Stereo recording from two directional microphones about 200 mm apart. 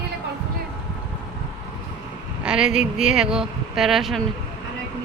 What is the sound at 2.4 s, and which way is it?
Speech, 5° right (ahead or behind).